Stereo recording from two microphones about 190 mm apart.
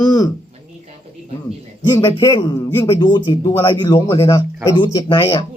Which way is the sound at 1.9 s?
20° left (ahead or behind).